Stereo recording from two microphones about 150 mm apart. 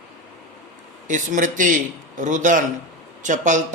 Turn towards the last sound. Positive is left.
turn(degrees=-55)  # may be behind; listen again after turning